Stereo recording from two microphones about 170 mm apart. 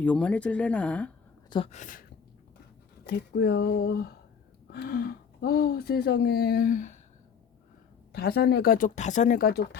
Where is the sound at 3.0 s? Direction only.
70° left (ahead or behind); by 6.9 s 50° left (ahead or behind).